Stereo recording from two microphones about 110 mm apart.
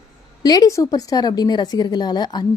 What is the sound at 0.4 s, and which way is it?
A woman's voice, 35° left (ahead or behind).